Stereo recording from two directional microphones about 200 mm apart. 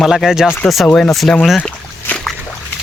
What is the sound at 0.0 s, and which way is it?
Speech, centre (ahead or behind).